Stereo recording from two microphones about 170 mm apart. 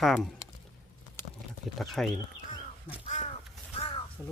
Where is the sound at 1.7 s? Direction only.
Centre (ahead or behind).